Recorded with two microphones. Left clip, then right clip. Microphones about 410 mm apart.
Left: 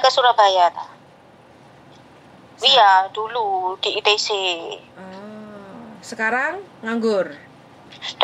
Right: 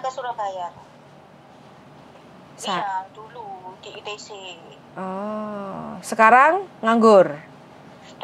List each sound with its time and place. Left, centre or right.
0.0 s a woman's voice: left
2.7 s a woman's voice: left
5.9 s a woman's voice: right